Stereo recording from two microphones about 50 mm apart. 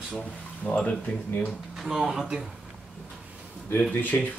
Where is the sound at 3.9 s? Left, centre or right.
Left.